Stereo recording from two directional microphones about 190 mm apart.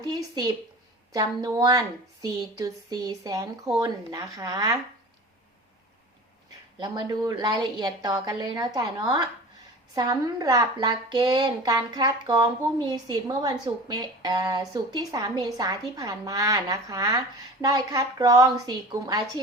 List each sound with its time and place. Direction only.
0.0 s a woman's voice: 20° right (ahead or behind)
6.7 s a woman's voice: 20° right (ahead or behind)